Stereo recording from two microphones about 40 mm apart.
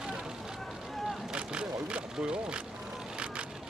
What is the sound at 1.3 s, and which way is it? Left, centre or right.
Vehicle, right.